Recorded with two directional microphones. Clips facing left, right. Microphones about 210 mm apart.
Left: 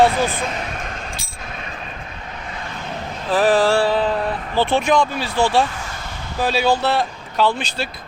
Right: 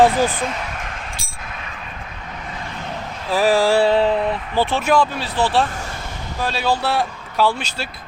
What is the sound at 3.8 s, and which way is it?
Speech, 25° right (ahead or behind).